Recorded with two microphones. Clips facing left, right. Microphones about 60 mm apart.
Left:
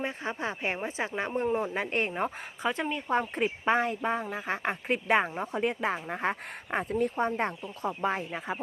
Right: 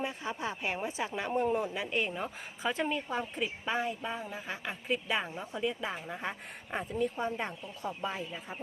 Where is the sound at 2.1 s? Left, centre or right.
Left.